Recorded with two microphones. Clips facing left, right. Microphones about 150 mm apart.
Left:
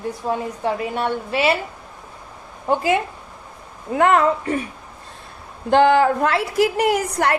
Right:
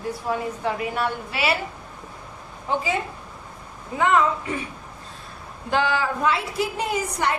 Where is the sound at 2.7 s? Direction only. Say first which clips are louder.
Left 6 dB; 65° left (ahead or behind).